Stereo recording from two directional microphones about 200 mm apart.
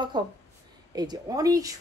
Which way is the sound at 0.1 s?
20° right (ahead or behind).